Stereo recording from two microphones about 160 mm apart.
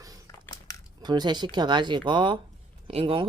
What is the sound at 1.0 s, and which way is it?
Speech, 25° right (ahead or behind).